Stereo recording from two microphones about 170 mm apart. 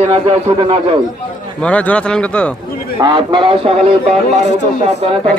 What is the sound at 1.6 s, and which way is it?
Speech, 10° left (ahead or behind).